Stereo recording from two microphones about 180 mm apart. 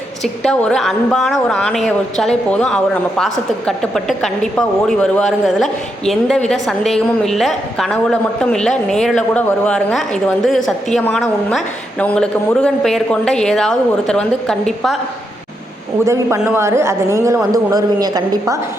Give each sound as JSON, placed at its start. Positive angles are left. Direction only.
{"t": 0.2, "sound": "a woman's voice", "side_deg": 5}
{"t": 16.0, "sound": "a man's voice", "side_deg": -15}